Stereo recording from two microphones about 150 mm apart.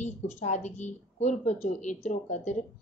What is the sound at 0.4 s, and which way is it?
Speech, 50° left (ahead or behind).